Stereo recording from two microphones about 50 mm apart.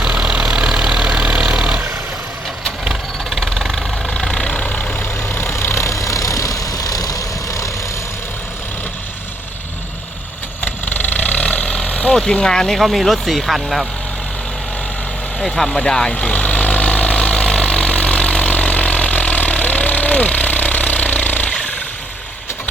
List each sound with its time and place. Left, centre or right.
0.0 s vehicle: centre
2.9 s vehicle: centre
4.0 s vehicle: centre
4.9 s vehicle: left
10.6 s vehicle: left
12.1 s speech: centre
15.4 s speech: centre
16.2 s vehicle: left